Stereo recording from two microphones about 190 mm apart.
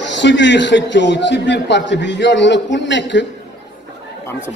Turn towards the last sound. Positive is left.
turn(degrees=70)  # may be behind; listen again after turning